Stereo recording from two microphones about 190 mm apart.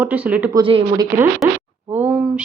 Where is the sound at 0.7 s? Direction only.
25° right (ahead or behind).